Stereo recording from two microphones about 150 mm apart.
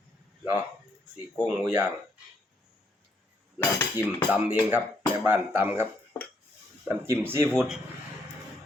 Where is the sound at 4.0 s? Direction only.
10° right (ahead or behind).